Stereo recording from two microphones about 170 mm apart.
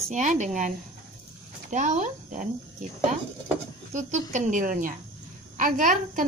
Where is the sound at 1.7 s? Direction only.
45° right (ahead or behind).